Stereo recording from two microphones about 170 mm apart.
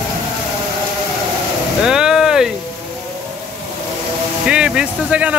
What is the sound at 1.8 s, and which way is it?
Vehicle, 5° right (ahead or behind).